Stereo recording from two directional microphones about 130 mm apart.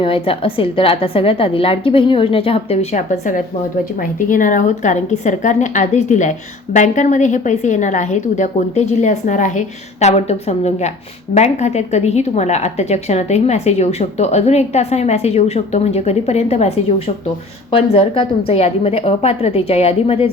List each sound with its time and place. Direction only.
0.0 s a woman's voice: 45° left (ahead or behind); by 3.4 s 75° left (ahead or behind)
4.0 s a woman's voice: 90° left; by 20.3 s 50° left (ahead or behind)